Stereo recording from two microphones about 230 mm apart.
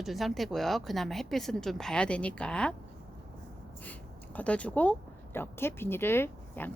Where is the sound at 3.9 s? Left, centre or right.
Centre.